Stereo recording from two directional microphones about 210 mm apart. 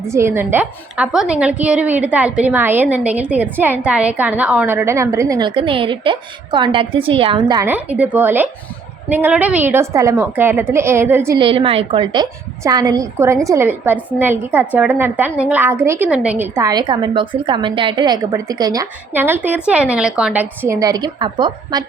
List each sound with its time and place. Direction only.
0.0 s a woman's voice: 15° right (ahead or behind)
11.3 s a woman's voice: 25° right (ahead or behind)